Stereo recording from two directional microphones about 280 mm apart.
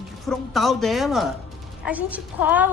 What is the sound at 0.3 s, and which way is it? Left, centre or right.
A woman's voice, centre.